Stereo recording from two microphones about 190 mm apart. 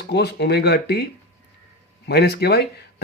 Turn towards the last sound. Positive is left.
turn(degrees=55)  # may be behind; listen again after turning